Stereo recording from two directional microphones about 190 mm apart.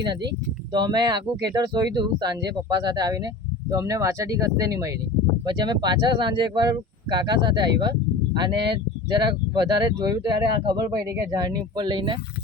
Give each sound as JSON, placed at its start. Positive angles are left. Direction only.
{"t": 0.7, "sound": "speech", "side_deg": -20}